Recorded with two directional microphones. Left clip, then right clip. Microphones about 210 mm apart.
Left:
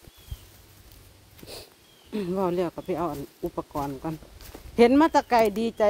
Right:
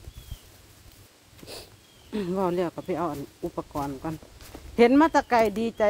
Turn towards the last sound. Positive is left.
turn(degrees=10)  # may be behind; listen again after turning